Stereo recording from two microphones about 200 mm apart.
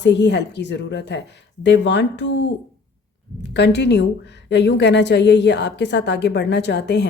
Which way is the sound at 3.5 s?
55° left (ahead or behind).